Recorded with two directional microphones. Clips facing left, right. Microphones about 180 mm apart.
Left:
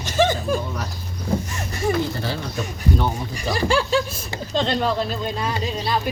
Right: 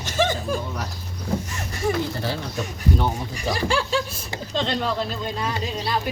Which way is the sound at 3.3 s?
40° left (ahead or behind).